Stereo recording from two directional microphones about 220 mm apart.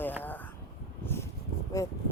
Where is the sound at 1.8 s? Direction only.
15° left (ahead or behind).